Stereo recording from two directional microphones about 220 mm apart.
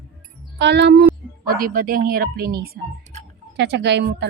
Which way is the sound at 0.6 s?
50° right (ahead or behind).